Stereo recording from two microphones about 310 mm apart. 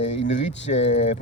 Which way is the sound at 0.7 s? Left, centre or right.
Left.